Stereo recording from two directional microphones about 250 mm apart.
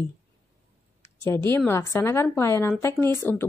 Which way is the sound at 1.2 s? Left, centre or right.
Centre.